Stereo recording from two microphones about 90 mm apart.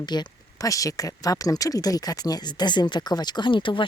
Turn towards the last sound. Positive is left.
turn(degrees=65)  # may be behind; listen again after turning